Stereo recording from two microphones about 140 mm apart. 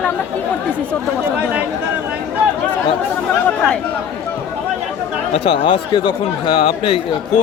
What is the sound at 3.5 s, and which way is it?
Speech, 10° left (ahead or behind).